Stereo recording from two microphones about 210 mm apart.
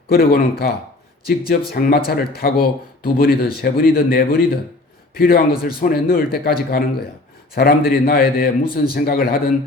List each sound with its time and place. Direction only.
0.1 s speech: 45° left (ahead or behind)